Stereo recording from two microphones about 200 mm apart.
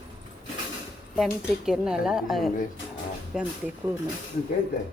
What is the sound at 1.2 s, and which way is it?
Speech, centre (ahead or behind).